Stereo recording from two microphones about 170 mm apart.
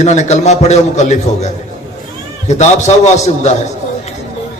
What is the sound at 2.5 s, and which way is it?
A man's voice, 45° left (ahead or behind).